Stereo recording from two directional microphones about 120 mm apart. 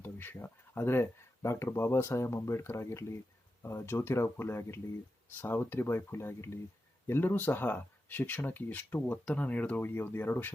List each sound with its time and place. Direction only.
0.0 s speech: 20° left (ahead or behind)